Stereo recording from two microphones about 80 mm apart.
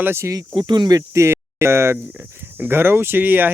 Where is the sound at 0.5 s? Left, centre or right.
Right.